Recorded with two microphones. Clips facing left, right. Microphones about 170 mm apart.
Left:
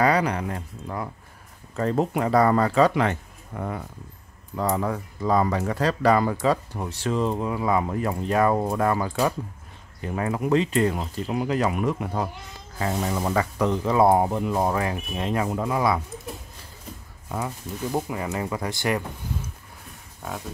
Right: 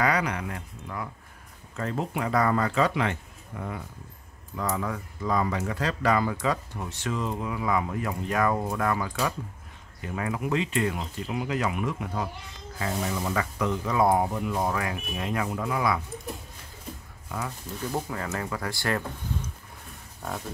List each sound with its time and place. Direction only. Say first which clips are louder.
0.0 s speech: left 5 dB; 35° left (ahead or behind)
4.6 s speech: left 5 dB; 35° left (ahead or behind)
17.9 s speech: left 4 dB; 15° left (ahead or behind)
20.2 s speech: left 1 dB; centre (ahead or behind)